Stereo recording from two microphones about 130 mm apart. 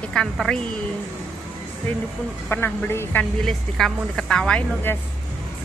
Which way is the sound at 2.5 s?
15° left (ahead or behind).